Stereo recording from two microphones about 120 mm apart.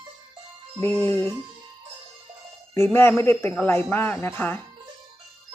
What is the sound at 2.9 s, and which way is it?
Speech, 20° left (ahead or behind).